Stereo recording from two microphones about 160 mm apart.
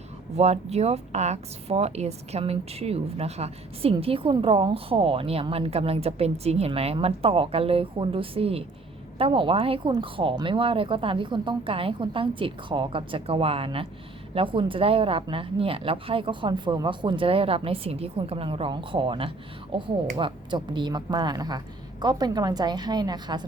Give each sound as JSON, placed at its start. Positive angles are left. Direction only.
{"t": 0.3, "sound": "a woman's voice", "side_deg": -40}